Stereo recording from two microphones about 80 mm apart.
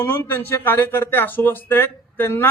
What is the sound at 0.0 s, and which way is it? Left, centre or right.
A man's voice, left.